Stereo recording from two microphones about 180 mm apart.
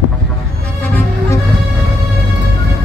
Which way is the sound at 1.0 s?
15° left (ahead or behind).